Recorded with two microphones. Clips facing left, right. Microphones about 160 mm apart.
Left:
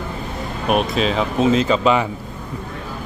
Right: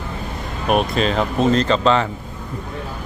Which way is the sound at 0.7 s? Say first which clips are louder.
Even; centre (ahead or behind).